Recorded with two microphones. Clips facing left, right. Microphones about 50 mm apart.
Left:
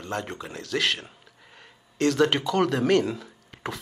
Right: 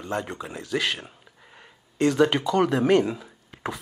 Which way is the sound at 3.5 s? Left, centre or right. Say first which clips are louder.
Right 2 dB; centre.